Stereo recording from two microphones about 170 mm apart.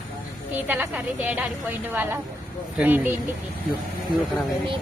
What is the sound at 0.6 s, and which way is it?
A woman's voice, 10° right (ahead or behind).